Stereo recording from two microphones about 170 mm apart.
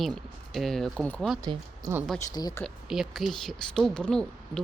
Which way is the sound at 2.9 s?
Centre (ahead or behind).